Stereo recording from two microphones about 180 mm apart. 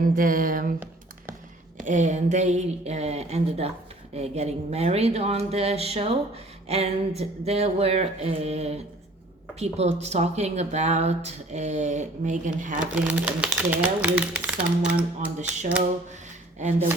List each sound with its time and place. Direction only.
0.2 s speech: 50° right (ahead or behind)
1.8 s speech: 45° right (ahead or behind)
12.8 s speech: 5° right (ahead or behind)
16.6 s speech: 40° right (ahead or behind)